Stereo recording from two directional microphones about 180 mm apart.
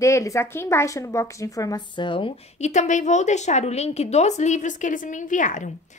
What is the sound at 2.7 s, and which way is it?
A woman's voice, 40° left (ahead or behind).